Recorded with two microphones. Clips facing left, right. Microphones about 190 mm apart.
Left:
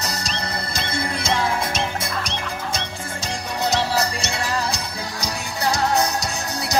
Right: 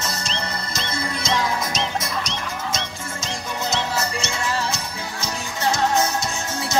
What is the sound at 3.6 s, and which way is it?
Music, 35° left (ahead or behind).